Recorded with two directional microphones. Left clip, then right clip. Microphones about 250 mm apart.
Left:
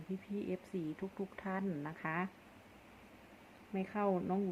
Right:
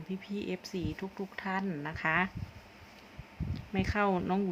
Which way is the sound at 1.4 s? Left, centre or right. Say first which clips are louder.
Right 7 dB; centre.